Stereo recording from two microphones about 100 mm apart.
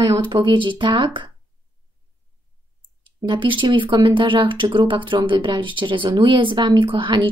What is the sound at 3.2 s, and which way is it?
Speech, 55° right (ahead or behind).